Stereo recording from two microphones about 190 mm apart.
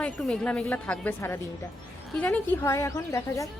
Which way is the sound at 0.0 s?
5° left (ahead or behind).